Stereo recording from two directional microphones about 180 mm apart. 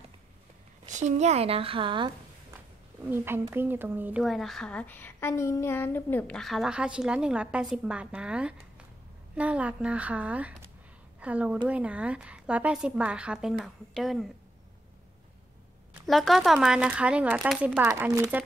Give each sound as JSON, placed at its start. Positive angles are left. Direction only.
{"t": 0.8, "sound": "speech", "side_deg": -40}
{"t": 3.1, "sound": "a woman's voice", "side_deg": -10}
{"t": 4.2, "sound": "a woman's voice", "side_deg": 0}
{"t": 16.1, "sound": "a woman's voice", "side_deg": 0}